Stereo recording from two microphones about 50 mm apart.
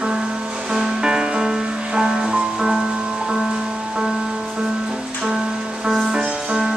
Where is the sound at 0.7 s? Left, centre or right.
Centre.